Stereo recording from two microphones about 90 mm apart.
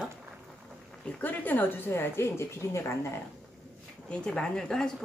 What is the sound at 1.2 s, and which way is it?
A woman's voice, 20° left (ahead or behind).